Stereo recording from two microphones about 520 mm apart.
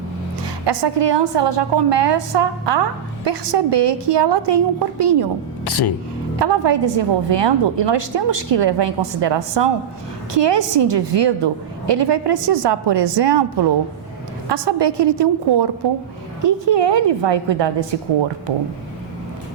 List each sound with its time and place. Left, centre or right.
0.4 s a woman's voice: right
5.6 s speech: left
6.4 s a woman's voice: right
14.5 s a woman's voice: right